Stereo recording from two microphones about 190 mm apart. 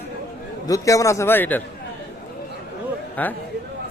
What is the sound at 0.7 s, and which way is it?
Speech, 15° left (ahead or behind).